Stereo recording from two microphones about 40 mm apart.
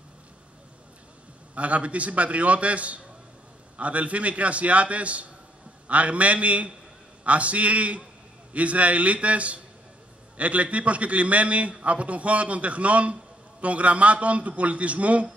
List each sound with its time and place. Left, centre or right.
1.5 s a man's voice: right